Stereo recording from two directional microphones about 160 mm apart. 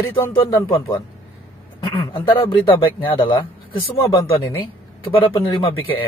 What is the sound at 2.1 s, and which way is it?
A man's voice, 30° left (ahead or behind).